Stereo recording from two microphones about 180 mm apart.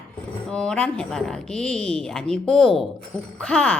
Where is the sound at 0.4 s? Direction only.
5° left (ahead or behind).